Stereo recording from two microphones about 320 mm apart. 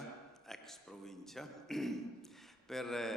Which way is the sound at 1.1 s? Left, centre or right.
Centre.